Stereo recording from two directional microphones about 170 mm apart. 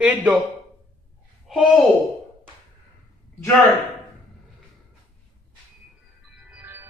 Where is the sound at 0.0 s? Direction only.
10° right (ahead or behind).